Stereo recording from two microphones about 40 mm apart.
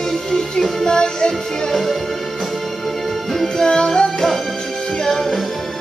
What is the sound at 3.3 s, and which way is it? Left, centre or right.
Music, centre.